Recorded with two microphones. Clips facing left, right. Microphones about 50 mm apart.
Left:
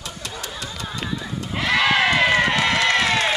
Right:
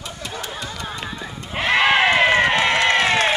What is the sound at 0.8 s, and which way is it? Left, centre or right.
Horse, centre.